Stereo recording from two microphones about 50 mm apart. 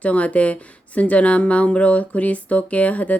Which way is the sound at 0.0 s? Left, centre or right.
Left.